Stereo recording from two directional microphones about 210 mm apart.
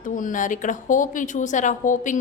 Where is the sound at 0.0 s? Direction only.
40° left (ahead or behind).